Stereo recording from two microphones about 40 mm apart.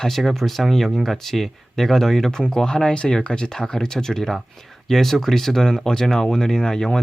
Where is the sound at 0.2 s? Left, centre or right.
Centre.